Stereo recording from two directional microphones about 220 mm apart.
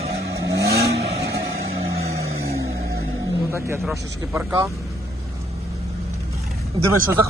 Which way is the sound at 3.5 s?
10° right (ahead or behind).